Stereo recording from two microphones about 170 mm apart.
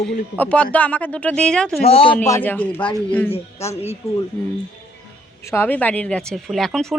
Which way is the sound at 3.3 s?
40° left (ahead or behind).